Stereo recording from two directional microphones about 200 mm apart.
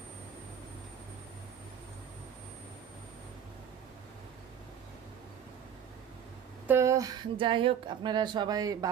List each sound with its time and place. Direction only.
6.7 s speech: 15° right (ahead or behind)
7.3 s speech: 25° right (ahead or behind)